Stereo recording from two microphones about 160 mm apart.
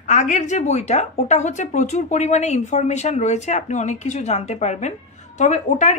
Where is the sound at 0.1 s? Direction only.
50° left (ahead or behind).